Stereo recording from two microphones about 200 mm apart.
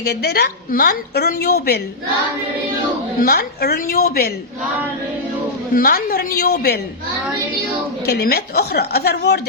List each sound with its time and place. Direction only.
0.0 s a woman's voice: 55° left (ahead or behind)
3.2 s a woman's voice: 50° left (ahead or behind)
5.7 s a woman's voice: 45° left (ahead or behind)
8.0 s a woman's voice: 50° left (ahead or behind)